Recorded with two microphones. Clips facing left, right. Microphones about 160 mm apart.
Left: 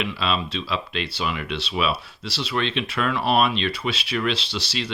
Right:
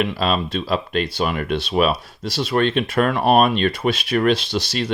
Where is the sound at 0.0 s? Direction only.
45° right (ahead or behind).